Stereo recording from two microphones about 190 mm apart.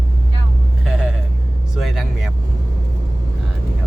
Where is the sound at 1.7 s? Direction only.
Centre (ahead or behind).